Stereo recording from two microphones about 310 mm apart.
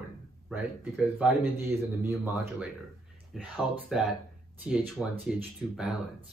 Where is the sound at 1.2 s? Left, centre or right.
Centre.